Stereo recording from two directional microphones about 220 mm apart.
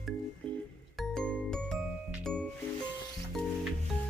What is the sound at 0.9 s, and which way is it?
Music, 5° left (ahead or behind).